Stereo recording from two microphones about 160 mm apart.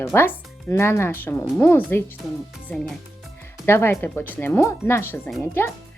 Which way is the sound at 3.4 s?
15° left (ahead or behind).